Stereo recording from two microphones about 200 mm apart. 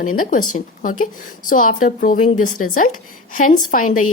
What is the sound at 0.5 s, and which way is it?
A woman's voice, 40° left (ahead or behind).